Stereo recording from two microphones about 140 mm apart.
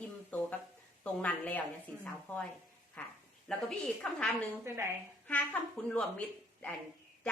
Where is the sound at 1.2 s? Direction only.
10° left (ahead or behind).